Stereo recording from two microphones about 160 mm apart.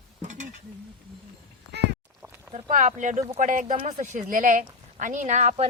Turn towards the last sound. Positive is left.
turn(degrees=-45)  # may be behind; listen again after turning